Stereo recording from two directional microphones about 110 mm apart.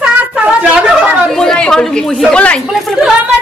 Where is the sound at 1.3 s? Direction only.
5° left (ahead or behind).